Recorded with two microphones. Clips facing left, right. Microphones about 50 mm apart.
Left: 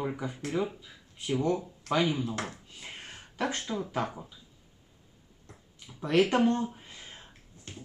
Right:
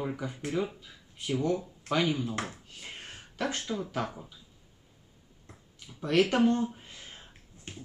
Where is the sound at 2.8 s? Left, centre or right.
Centre.